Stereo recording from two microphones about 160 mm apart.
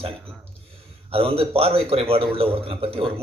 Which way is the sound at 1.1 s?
35° right (ahead or behind).